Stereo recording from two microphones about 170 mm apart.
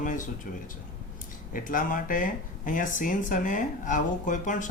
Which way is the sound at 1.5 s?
55° left (ahead or behind).